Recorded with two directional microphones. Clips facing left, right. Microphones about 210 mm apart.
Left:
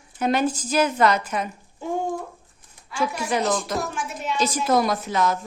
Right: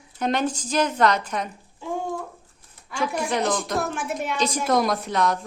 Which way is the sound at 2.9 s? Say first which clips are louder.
Even; 5° left (ahead or behind).